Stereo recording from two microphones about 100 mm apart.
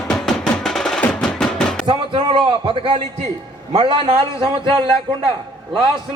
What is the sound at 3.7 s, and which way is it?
Speech, 55° right (ahead or behind).